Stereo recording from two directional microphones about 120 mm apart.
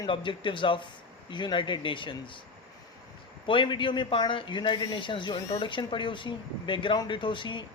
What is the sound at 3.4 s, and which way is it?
Speech, 40° left (ahead or behind).